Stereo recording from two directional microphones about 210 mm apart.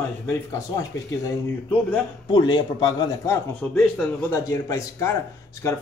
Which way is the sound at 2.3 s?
20° left (ahead or behind).